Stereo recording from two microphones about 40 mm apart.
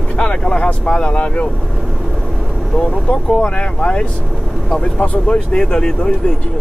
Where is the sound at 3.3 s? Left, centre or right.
Left.